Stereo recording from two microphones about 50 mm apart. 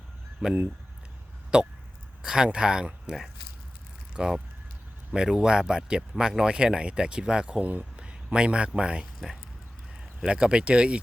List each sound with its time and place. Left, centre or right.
0.4 s speech: centre
7.6 s speech: right
7.9 s a man's voice: right
9.1 s speech: centre
10.2 s speech: centre